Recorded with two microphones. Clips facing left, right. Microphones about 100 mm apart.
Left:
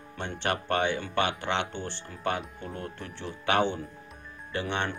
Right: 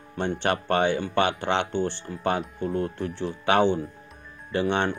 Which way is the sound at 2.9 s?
35° right (ahead or behind).